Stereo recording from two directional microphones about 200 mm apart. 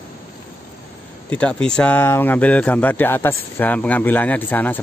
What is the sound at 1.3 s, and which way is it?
Speech, 5° left (ahead or behind).